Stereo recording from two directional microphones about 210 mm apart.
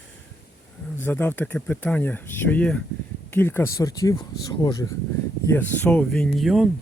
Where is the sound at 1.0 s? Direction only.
10° left (ahead or behind).